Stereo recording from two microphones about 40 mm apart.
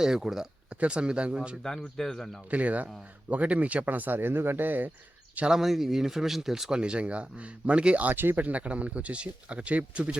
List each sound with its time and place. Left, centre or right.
0.0 s speech: centre
0.7 s speech: right
1.6 s speech: centre
2.5 s speech: right
4.2 s speech: right
5.5 s speech: centre; by 8.0 s right
8.0 s speech: right
8.4 s speech: right